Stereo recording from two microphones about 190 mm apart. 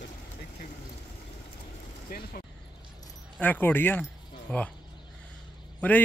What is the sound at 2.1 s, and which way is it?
Speech, 50° left (ahead or behind).